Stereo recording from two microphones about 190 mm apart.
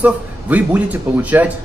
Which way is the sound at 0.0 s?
10° right (ahead or behind).